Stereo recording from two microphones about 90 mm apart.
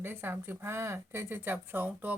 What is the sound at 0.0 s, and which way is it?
A woman's voice, 25° right (ahead or behind).